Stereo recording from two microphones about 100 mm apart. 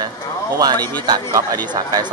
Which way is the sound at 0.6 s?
45° right (ahead or behind).